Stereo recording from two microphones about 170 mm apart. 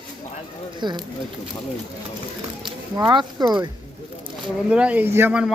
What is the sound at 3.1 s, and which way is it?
Speech, 25° right (ahead or behind).